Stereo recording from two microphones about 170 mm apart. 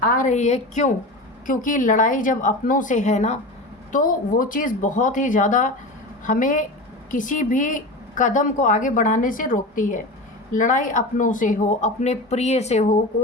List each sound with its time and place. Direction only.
0.0 s a woman's voice: 55° left (ahead or behind)